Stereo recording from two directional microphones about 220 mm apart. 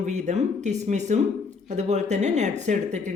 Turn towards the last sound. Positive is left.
turn(degrees=-35)  # may be behind; listen again after turning